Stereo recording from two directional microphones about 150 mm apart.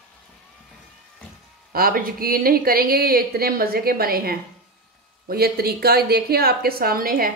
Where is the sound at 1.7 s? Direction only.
75° right (ahead or behind).